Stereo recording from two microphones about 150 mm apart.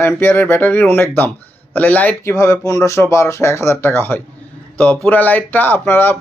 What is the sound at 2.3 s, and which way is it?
Speech, 20° left (ahead or behind).